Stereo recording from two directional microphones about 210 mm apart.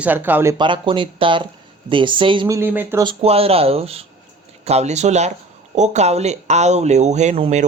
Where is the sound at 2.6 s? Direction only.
10° right (ahead or behind).